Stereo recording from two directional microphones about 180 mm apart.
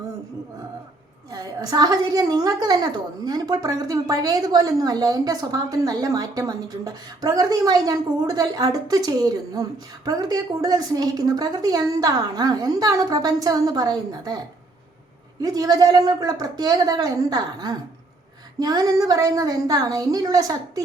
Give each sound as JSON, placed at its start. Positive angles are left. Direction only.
{"t": 1.3, "sound": "a woman's voice", "side_deg": -20}